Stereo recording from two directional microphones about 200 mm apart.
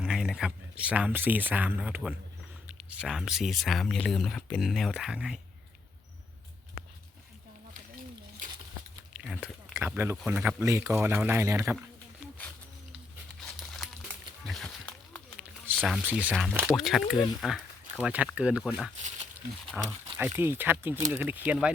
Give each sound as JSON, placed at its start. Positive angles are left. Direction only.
{"t": 0.0, "sound": "speech", "side_deg": 0}
{"t": 8.4, "sound": "a sound", "side_deg": -40}
{"t": 9.1, "sound": "speech", "side_deg": -5}
{"t": 13.6, "sound": "crumpling", "side_deg": 0}
{"t": 14.4, "sound": "a sound", "side_deg": 0}
{"t": 15.8, "sound": "speech", "side_deg": -5}
{"t": 20.1, "sound": "speech", "side_deg": -10}